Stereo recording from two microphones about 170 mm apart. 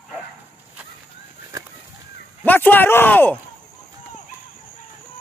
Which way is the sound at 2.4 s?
10° left (ahead or behind).